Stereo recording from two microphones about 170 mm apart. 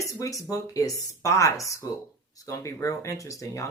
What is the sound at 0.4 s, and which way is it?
Speech, 20° left (ahead or behind).